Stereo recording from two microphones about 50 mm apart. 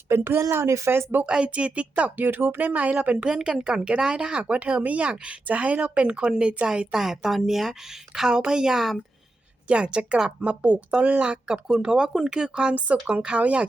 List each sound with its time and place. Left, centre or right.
0.1 s speech: right
0.9 s speech: right
1.2 s speech: right
6.7 s speech: centre
9.6 s speech: right
11.4 s speech: centre